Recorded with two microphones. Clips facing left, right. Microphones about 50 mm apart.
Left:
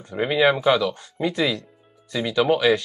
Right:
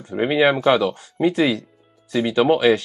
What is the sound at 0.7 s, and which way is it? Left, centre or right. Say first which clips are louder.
Speech: right 2 dB; right.